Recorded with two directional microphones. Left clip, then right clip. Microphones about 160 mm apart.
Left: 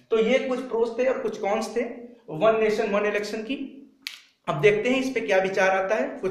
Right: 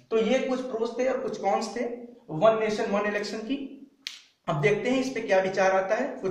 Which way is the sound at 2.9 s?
25° left (ahead or behind).